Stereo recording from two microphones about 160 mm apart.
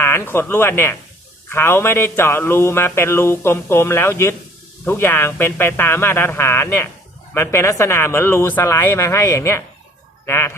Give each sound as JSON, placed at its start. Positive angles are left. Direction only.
{"t": 0.0, "sound": "a man's voice", "side_deg": 15}